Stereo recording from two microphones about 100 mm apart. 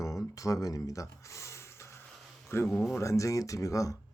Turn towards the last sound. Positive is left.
turn(degrees=35)  # may be behind; listen again after turning